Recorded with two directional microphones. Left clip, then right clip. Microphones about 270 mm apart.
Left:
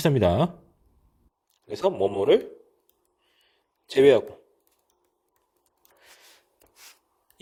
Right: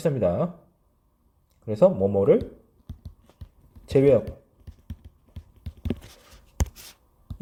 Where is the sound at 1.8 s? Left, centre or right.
Left.